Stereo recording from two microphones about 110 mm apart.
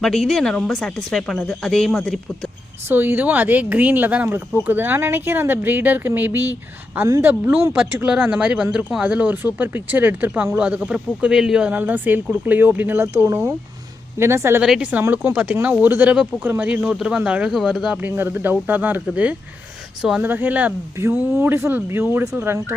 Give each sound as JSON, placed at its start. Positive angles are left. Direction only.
{"t": 0.0, "sound": "speech", "side_deg": 0}
{"t": 2.9, "sound": "speech", "side_deg": -20}
{"t": 14.6, "sound": "speech", "side_deg": -10}
{"t": 18.0, "sound": "speech", "side_deg": -20}
{"t": 20.2, "sound": "speech", "side_deg": -15}